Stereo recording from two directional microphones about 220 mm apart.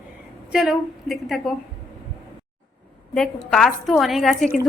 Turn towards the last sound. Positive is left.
turn(degrees=0)  # may be behind; listen again after turning